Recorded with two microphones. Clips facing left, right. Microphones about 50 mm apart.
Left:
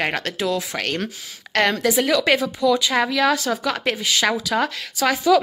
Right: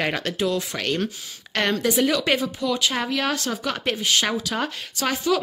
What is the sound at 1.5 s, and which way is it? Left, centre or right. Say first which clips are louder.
Speech: left 4 dB; left.